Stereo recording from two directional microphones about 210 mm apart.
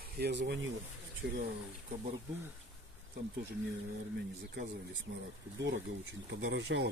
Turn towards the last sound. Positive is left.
turn(degrees=-55)  # may be behind; listen again after turning